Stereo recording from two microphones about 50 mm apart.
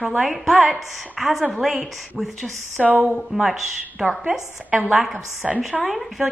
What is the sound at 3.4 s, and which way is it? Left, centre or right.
Speech, centre.